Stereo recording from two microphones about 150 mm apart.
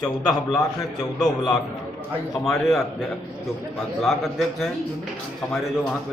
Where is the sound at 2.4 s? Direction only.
Centre (ahead or behind).